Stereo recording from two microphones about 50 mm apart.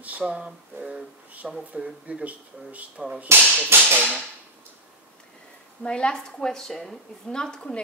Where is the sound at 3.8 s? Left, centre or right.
Right.